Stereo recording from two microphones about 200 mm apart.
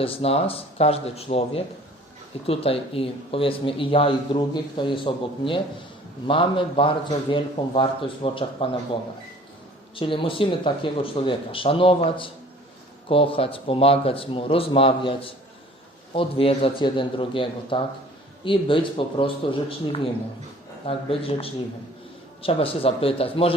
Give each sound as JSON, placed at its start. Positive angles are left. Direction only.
{"t": 0.0, "sound": "speech", "side_deg": 30}